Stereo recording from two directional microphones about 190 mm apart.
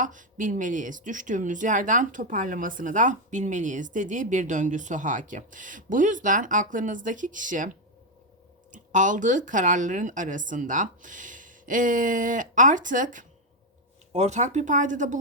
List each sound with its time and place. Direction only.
0.0 s speech: 45° right (ahead or behind)
8.7 s speech: 40° right (ahead or behind)